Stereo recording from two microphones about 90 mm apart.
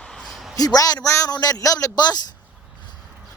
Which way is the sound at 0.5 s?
40° left (ahead or behind).